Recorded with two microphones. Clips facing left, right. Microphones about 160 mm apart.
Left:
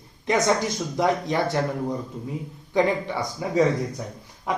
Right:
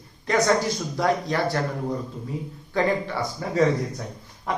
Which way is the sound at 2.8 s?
20° left (ahead or behind).